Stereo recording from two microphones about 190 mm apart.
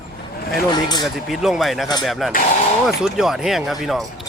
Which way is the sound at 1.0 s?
Centre (ahead or behind).